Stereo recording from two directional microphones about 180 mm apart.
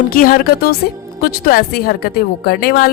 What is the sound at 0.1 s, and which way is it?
A woman's voice, 50° left (ahead or behind).